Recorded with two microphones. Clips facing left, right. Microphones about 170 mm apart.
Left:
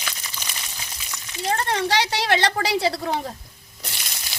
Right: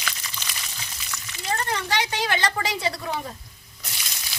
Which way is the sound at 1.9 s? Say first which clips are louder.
Left 2 dB; 80° left.